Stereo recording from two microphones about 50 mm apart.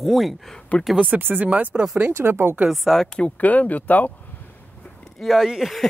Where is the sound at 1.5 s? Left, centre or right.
Right.